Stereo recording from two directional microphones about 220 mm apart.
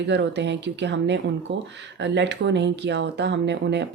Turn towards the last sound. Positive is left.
turn(degrees=-50)  # may be behind; listen again after turning